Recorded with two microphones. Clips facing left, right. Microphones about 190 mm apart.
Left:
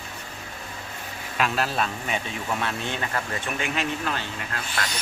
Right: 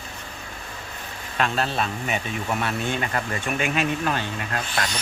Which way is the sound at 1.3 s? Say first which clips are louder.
Right 1 dB; 5° left (ahead or behind).